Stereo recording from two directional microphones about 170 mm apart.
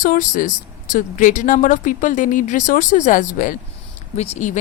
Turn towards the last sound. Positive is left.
turn(degrees=45)  # may be behind; listen again after turning